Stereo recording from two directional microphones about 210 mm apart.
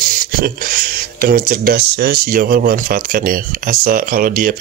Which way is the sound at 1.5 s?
45° right (ahead or behind).